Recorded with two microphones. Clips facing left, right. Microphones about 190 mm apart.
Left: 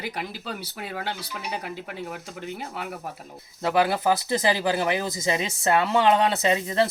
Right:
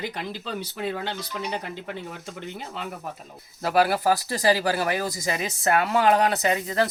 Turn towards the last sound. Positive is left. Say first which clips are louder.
# left 1 dB
turn(degrees=25)  # may be behind; listen again after turning